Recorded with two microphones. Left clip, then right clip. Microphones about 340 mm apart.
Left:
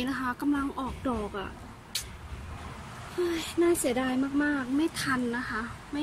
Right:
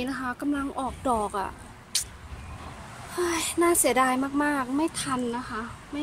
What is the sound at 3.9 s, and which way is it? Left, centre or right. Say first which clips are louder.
Speech: right 6 dB; centre.